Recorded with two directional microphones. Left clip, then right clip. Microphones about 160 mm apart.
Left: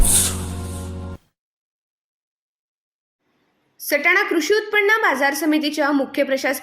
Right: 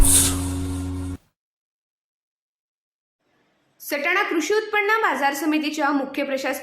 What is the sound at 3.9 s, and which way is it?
A woman's voice, 30° left (ahead or behind).